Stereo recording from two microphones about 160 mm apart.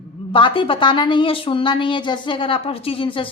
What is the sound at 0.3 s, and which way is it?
Speech, 30° left (ahead or behind).